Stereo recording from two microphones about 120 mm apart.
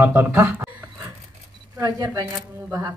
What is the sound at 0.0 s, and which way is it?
Speech, 20° right (ahead or behind).